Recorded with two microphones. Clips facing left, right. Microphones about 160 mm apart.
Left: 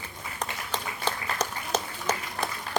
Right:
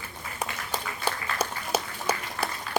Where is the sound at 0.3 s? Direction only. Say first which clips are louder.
Right 1 dB; 10° right (ahead or behind).